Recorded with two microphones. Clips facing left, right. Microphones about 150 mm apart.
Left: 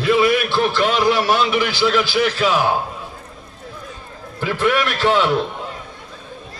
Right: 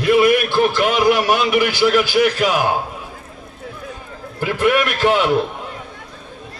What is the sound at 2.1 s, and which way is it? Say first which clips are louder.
Speech: right 3 dB; 50° right (ahead or behind).